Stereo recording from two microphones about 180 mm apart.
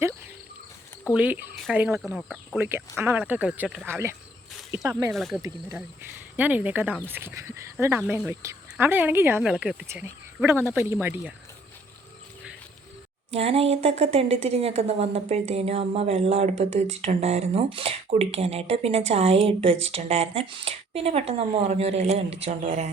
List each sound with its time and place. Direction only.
1.1 s speech: 10° right (ahead or behind)
5.1 s speech: centre (ahead or behind)
9.8 s speech: 15° right (ahead or behind)
13.3 s a woman's voice: 35° right (ahead or behind)